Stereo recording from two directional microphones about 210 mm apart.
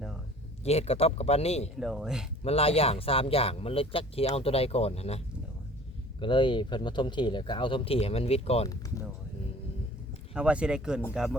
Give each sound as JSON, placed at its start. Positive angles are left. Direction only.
{"t": 0.6, "sound": "speech", "side_deg": 30}
{"t": 1.8, "sound": "speech", "side_deg": 0}
{"t": 2.4, "sound": "speech", "side_deg": 30}
{"t": 8.6, "sound": "speech", "side_deg": 15}
{"t": 10.3, "sound": "speech", "side_deg": -5}